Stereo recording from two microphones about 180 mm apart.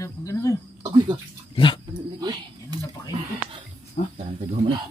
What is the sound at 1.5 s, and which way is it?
Dog, 25° left (ahead or behind).